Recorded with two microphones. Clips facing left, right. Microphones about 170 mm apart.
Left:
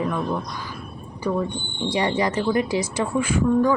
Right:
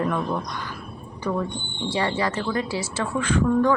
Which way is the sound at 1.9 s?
15° left (ahead or behind).